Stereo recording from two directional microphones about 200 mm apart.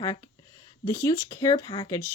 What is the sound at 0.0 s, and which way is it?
A woman's voice, 20° left (ahead or behind).